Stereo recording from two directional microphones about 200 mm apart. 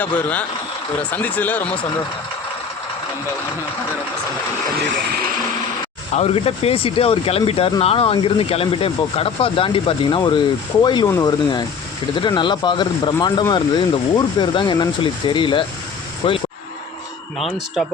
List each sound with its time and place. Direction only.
0.0 s speech: 5° left (ahead or behind)
6.1 s speech: 30° left (ahead or behind)
17.3 s speech: centre (ahead or behind)